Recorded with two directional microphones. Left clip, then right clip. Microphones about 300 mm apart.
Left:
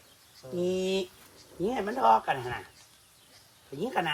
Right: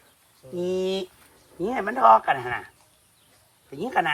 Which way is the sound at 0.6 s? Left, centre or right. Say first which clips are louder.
Right 3 dB; centre.